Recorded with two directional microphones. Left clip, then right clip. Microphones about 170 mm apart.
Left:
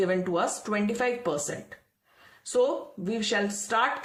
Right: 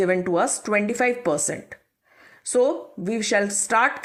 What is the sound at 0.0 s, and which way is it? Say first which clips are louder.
Speech: right 5 dB; 35° right (ahead or behind).